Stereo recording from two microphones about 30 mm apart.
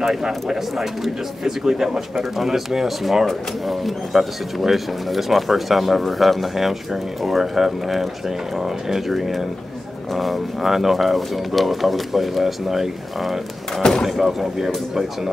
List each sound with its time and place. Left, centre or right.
0.0 s speech: centre
14.0 s speech: centre
14.4 s speech: centre